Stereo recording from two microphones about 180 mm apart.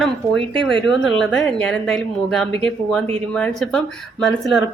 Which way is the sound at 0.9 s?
5° left (ahead or behind).